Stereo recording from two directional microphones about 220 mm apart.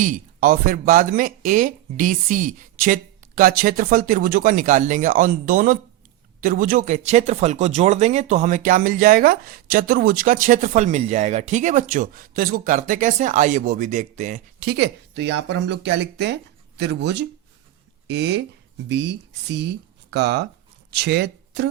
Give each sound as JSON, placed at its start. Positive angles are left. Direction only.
{"t": 0.0, "sound": "speech", "side_deg": -40}